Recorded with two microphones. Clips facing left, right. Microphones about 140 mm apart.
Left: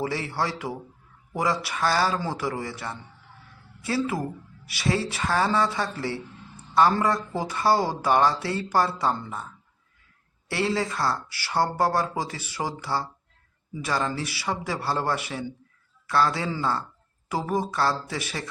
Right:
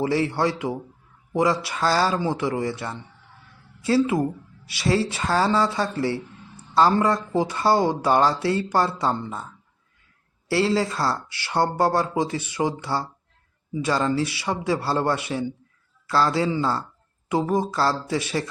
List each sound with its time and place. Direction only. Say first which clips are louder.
0.0 s speech: right 6 dB; 30° right (ahead or behind)
10.5 s speech: right 5 dB; 30° right (ahead or behind)